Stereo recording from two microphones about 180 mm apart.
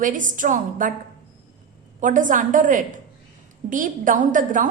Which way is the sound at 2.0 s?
45° right (ahead or behind).